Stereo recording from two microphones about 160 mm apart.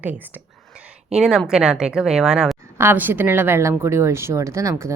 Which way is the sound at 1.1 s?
5° right (ahead or behind).